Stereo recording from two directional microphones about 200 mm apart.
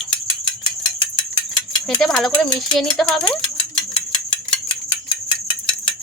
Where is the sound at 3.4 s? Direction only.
25° left (ahead or behind).